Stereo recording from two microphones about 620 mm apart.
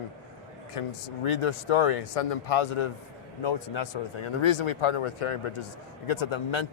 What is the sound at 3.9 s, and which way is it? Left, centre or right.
Speech, left.